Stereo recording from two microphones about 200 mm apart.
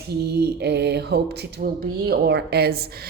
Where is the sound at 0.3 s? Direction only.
55° right (ahead or behind).